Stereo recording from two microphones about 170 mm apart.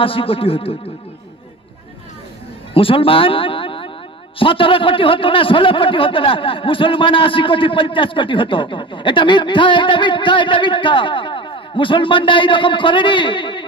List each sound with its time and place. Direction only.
0.0 s a man's voice: 30° left (ahead or behind)
2.7 s a man's voice: 35° left (ahead or behind)